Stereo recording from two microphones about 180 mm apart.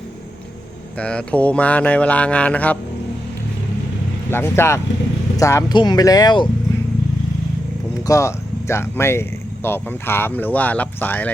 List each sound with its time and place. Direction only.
0.9 s speech: 5° left (ahead or behind)
4.3 s speech: 15° left (ahead or behind)
8.0 s speech: 15° left (ahead or behind)